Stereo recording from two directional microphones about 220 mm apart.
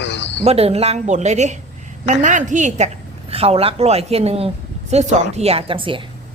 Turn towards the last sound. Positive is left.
turn(degrees=-25)  # may be behind; listen again after turning